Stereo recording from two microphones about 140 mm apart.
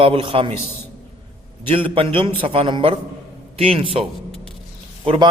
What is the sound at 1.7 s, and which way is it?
A man's voice, 40° right (ahead or behind).